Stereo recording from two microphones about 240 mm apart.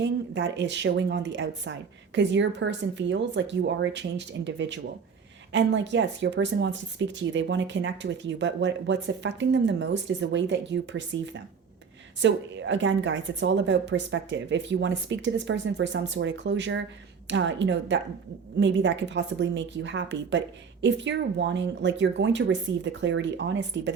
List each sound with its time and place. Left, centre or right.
0.0 s speech: right